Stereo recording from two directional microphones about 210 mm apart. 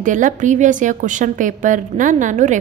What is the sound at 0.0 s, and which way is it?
A woman's voice, 35° right (ahead or behind).